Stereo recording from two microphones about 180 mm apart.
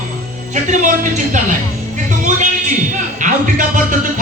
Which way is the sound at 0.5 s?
45° right (ahead or behind).